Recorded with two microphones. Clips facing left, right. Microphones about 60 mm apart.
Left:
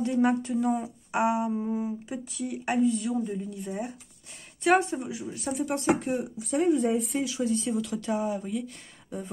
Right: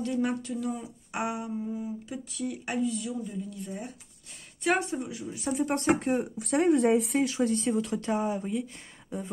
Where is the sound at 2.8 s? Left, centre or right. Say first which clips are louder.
Left 5 dB; left.